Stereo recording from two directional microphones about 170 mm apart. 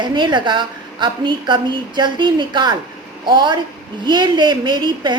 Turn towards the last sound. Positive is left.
turn(degrees=-25)  # may be behind; listen again after turning